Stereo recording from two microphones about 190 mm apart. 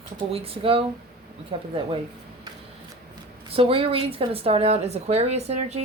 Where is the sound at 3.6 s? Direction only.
30° right (ahead or behind).